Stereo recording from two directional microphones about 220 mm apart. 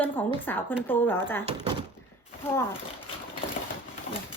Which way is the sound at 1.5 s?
20° right (ahead or behind).